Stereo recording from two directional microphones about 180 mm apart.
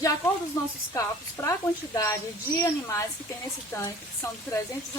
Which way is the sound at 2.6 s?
15° left (ahead or behind).